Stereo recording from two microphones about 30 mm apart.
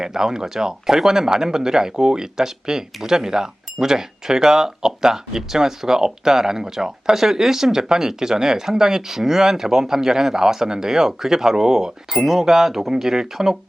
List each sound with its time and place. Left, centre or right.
0.0 s speech: centre